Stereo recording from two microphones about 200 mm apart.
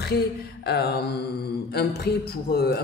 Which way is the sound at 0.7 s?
55° left (ahead or behind).